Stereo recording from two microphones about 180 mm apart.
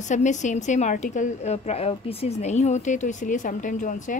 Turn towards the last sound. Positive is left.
turn(degrees=45)  # may be behind; listen again after turning